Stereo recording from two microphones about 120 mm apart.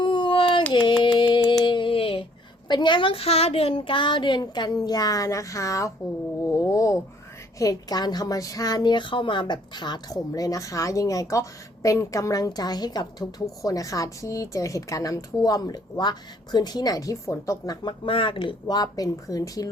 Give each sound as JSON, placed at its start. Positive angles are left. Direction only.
{"t": 0.0, "sound": "a sound", "side_deg": 45}
{"t": 2.6, "sound": "a woman's voice", "side_deg": 40}
{"t": 17.8, "sound": "a woman's voice", "side_deg": 45}